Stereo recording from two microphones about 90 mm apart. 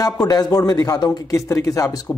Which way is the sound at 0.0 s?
45° left (ahead or behind).